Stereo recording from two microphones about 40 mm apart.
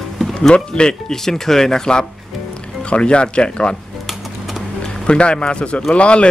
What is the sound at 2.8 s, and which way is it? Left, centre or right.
Speech, left.